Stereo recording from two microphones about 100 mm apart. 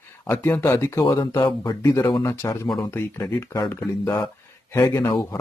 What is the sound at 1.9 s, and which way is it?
Speech, 30° left (ahead or behind).